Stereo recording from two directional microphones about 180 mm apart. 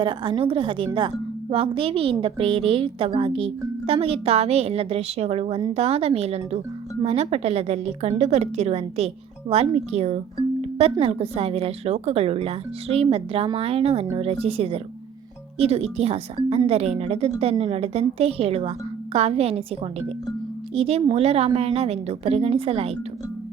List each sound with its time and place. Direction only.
0.0 s a woman's voice: 30° right (ahead or behind)
10.6 s music: 35° right (ahead or behind)
11.0 s speech: 35° right (ahead or behind)